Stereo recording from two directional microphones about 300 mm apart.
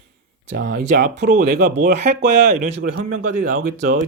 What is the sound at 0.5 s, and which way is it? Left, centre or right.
Speech, right.